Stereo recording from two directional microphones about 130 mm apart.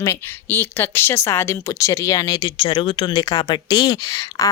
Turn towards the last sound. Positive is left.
turn(degrees=25)  # may be behind; listen again after turning